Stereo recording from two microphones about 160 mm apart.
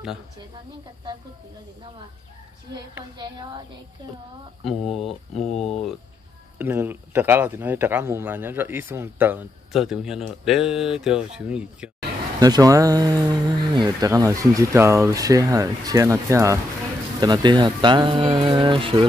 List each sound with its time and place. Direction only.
3.2 s speech: 30° right (ahead or behind)
4.6 s speech: centre (ahead or behind)
6.6 s speech: 15° right (ahead or behind)
12.4 s speech: 25° right (ahead or behind)